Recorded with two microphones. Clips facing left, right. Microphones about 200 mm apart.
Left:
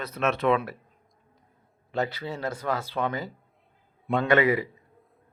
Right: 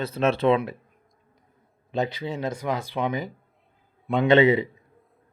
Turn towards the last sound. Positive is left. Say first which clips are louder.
# right 4 dB
turn(degrees=-25)  # may be behind; listen again after turning